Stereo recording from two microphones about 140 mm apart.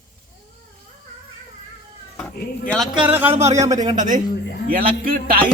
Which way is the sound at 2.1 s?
5° left (ahead or behind).